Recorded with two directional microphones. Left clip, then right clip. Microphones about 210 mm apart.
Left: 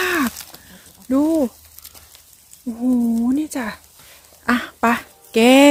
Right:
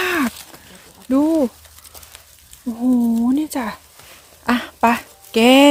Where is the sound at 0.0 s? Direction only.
Centre (ahead or behind).